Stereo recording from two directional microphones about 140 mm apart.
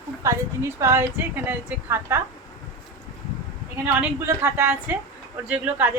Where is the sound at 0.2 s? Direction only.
20° right (ahead or behind).